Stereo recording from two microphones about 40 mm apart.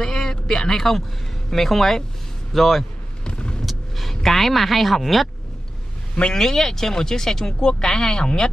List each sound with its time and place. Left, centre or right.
0.0 s a sound: centre
1.5 s speech: centre
3.3 s vehicle: left
3.6 s speech: centre
6.3 s speech: centre